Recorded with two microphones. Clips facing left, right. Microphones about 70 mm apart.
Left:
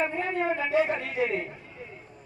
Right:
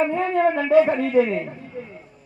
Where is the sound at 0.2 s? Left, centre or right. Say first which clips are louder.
Right 8 dB; right.